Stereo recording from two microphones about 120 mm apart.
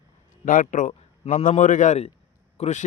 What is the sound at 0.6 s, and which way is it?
A man's voice, 90° left.